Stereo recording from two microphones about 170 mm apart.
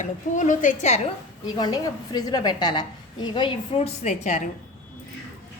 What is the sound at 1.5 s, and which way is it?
A woman's voice, 25° left (ahead or behind).